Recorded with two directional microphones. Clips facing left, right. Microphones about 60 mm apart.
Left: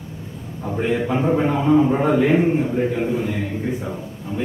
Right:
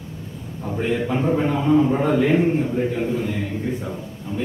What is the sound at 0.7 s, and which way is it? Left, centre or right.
A man's voice, centre.